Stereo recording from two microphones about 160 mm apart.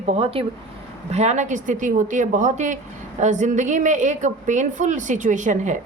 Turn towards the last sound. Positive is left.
turn(degrees=-50)  # may be behind; listen again after turning